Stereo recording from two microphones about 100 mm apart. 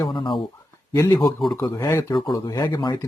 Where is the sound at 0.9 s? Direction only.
40° left (ahead or behind).